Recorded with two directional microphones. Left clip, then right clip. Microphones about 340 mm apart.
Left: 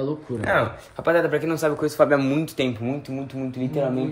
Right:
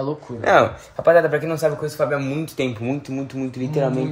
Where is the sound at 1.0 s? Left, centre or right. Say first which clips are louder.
Right 5 dB; centre.